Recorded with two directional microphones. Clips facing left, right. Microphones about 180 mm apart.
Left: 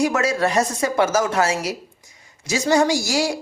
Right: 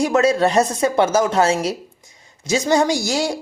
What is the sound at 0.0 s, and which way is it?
Speech, 25° right (ahead or behind).